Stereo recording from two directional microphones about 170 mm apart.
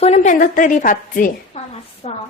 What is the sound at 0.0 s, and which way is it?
A woman's voice, 40° left (ahead or behind).